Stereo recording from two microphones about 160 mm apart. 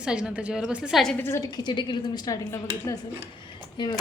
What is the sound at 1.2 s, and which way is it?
Speech, 20° left (ahead or behind).